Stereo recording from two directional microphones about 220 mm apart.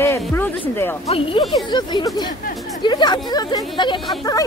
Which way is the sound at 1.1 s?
25° left (ahead or behind).